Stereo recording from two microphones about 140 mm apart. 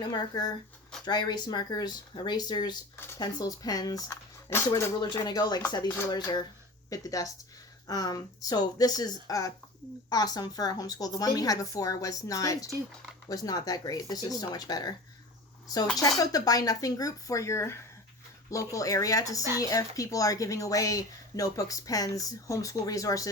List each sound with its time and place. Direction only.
0.1 s speech: 30° left (ahead or behind)
4.9 s speech: 30° left (ahead or behind)
16.0 s speech: 25° left (ahead or behind)